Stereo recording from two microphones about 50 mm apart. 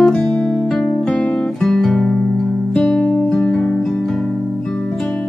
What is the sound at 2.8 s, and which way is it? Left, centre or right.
Music, centre.